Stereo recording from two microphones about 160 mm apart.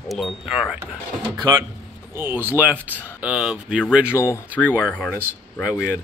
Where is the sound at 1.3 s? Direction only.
25° right (ahead or behind).